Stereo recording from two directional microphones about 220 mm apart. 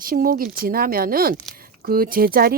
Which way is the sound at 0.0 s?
40° right (ahead or behind).